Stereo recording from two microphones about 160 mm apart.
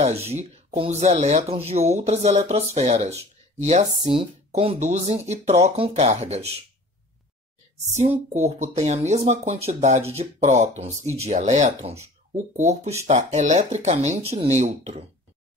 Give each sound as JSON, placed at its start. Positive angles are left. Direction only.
{"t": 0.3, "sound": "speech", "side_deg": -40}
{"t": 8.3, "sound": "speech", "side_deg": -45}
{"t": 13.0, "sound": "speech", "side_deg": -45}